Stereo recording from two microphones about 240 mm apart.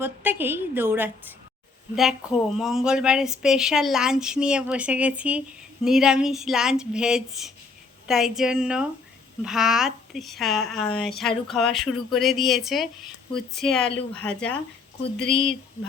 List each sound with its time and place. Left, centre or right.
0.0 s a woman's voice: centre
15.3 s speech: left